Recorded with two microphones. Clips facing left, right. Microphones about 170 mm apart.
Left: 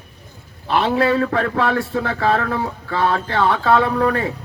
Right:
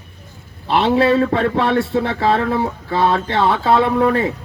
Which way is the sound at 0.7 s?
25° right (ahead or behind).